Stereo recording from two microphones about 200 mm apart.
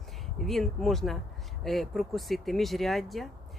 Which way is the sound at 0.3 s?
Centre (ahead or behind).